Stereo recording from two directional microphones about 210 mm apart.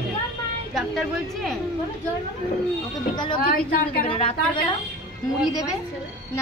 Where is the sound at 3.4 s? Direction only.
45° left (ahead or behind).